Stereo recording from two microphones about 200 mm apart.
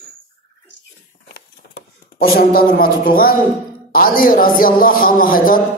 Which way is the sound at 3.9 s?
45° left (ahead or behind).